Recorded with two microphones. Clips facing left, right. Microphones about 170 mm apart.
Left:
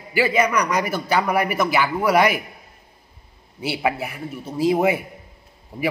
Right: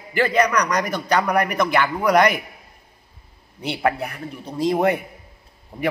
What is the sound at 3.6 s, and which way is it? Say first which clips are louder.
A man's voice: right 1 dB; 5° left (ahead or behind).